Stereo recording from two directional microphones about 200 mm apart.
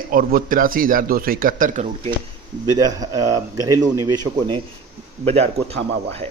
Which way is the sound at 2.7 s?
20° right (ahead or behind).